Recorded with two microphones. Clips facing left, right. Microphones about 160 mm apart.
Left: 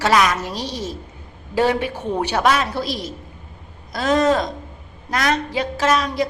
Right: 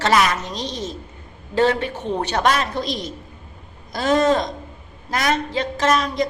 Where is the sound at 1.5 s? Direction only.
10° left (ahead or behind).